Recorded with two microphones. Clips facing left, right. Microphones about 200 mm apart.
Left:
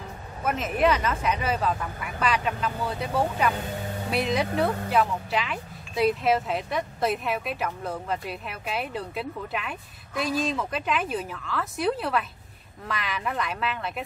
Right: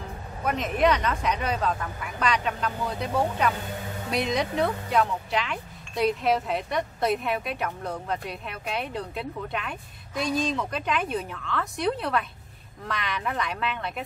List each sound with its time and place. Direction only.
0.4 s speech: 5° left (ahead or behind)